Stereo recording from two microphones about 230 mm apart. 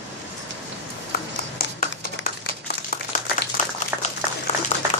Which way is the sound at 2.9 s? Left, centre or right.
Left.